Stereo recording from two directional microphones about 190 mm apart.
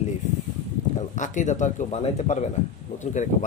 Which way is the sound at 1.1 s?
40° left (ahead or behind).